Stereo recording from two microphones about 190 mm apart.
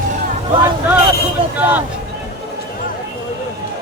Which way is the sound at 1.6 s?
10° right (ahead or behind).